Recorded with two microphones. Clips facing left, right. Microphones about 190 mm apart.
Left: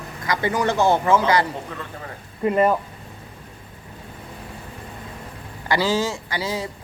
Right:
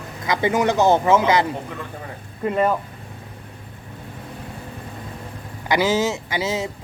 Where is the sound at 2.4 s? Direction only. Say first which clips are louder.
Left 2 dB; 5° left (ahead or behind).